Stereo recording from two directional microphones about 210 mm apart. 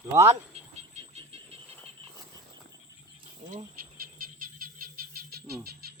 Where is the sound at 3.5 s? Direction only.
40° right (ahead or behind).